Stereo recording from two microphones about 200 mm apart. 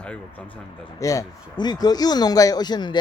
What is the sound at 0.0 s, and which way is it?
Speech, 5° left (ahead or behind).